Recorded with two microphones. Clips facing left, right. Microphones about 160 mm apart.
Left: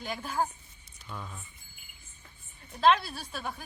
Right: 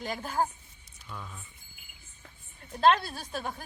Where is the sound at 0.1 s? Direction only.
40° right (ahead or behind).